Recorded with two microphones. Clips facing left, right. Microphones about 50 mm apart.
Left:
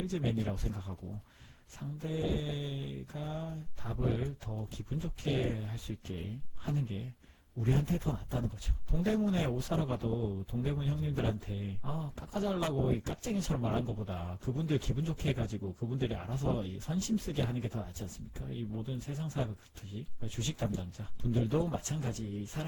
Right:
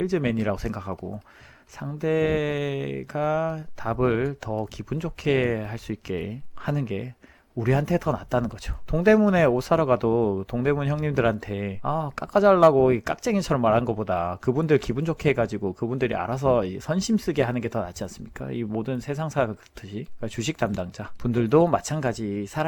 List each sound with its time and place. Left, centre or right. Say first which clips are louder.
0.0 s speech: right 11 dB; right